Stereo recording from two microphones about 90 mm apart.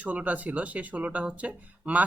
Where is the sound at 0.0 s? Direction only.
15° right (ahead or behind).